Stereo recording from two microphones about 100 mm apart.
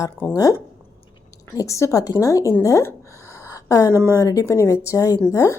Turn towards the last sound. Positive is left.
turn(degrees=30)  # may be behind; listen again after turning